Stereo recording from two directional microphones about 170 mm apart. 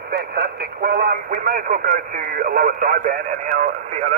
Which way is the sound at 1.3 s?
55° right (ahead or behind).